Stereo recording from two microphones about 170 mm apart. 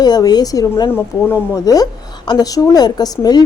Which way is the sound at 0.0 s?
25° left (ahead or behind).